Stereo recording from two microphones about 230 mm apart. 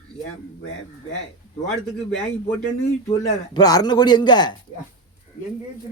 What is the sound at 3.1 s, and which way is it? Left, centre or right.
Speech, centre.